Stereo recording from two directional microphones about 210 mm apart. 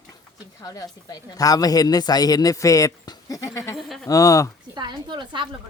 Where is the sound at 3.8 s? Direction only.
Centre (ahead or behind).